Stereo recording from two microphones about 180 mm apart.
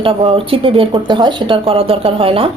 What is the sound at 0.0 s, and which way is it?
A woman's voice, 30° right (ahead or behind).